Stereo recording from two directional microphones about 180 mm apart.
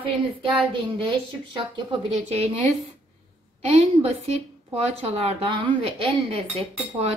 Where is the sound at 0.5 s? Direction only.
30° right (ahead or behind).